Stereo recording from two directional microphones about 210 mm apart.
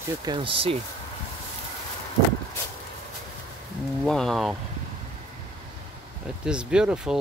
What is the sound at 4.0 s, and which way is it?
Speech, centre (ahead or behind).